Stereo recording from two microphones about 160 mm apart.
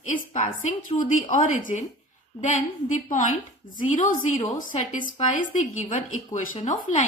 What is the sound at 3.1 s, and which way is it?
A woman's voice, 55° left (ahead or behind).